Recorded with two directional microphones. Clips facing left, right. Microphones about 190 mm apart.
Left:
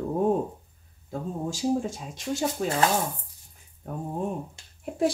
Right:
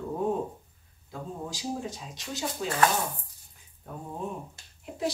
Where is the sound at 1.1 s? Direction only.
50° left (ahead or behind).